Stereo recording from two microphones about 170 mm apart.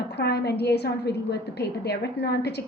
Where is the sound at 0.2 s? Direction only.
75° left (ahead or behind).